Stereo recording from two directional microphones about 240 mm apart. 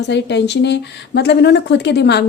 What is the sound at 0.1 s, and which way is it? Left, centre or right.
Speech, left.